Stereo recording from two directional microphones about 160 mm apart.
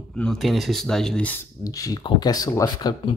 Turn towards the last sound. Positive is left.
turn(degrees=20)  # may be behind; listen again after turning